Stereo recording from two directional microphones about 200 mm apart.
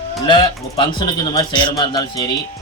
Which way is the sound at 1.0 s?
20° left (ahead or behind).